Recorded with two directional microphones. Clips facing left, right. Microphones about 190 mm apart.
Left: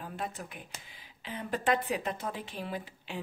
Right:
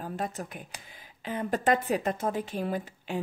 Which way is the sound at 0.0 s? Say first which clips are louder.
Right 5 dB; 40° right (ahead or behind).